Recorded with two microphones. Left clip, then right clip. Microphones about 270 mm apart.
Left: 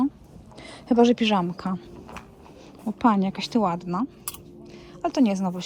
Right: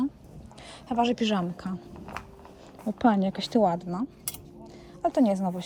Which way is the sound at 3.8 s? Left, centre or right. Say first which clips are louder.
Left 5 dB; left.